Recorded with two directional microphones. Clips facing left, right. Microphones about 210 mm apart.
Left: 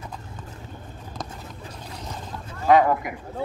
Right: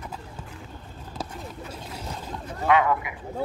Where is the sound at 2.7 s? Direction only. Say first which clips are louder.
Left 4 dB; 40° left (ahead or behind).